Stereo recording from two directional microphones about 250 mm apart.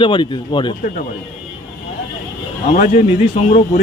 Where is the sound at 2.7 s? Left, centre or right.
Left.